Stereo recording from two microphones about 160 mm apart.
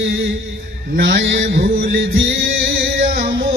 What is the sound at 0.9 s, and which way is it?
Mantra, 90° right.